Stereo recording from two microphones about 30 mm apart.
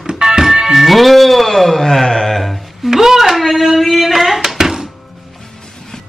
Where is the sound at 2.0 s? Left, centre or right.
Centre.